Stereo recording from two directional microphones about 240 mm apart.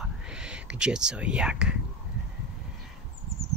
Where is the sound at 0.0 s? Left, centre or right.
Centre.